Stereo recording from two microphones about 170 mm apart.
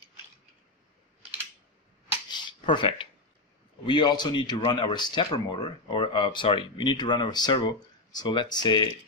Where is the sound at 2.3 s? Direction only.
30° left (ahead or behind).